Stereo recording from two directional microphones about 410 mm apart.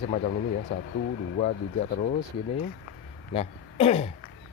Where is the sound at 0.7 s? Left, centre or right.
Centre.